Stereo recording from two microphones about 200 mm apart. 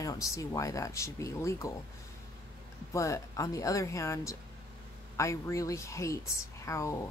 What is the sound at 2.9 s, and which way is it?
Speech, 15° left (ahead or behind).